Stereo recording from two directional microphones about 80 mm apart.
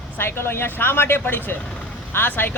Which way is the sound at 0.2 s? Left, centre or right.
Left.